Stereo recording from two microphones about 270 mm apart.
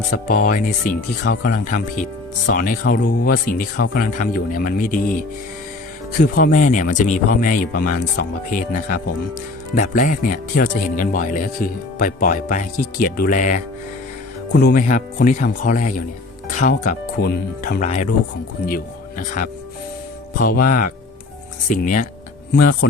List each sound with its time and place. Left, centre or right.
0.1 s speech: left
6.1 s speech: left
19.4 s speech: left